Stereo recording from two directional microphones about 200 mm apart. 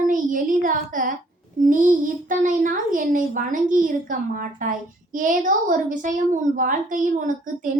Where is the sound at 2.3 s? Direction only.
40° right (ahead or behind).